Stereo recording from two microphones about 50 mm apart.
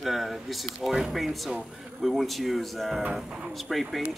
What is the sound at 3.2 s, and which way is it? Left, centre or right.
Speech, centre.